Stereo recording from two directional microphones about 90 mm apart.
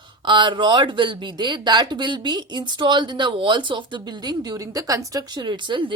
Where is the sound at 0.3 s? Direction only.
60° right (ahead or behind); by 5.4 s 40° right (ahead or behind).